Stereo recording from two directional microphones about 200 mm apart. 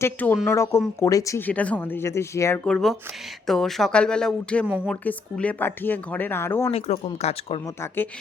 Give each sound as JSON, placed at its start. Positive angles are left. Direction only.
{"t": 0.0, "sound": "speech", "side_deg": 10}
{"t": 2.6, "sound": "speech", "side_deg": 0}
{"t": 6.7, "sound": "speech", "side_deg": 30}